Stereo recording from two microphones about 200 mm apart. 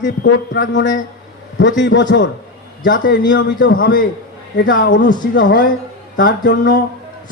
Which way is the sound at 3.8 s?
45° left (ahead or behind).